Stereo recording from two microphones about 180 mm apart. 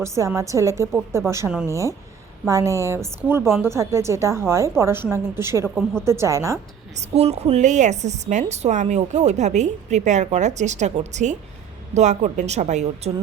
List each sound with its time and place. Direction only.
0.0 s a woman's voice: 15° right (ahead or behind)
6.9 s a woman's voice: 35° right (ahead or behind)